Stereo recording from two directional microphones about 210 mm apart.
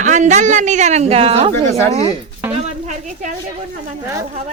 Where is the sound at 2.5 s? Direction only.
35° right (ahead or behind).